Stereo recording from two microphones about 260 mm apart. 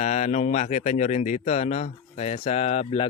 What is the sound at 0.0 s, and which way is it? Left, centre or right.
Speech, left.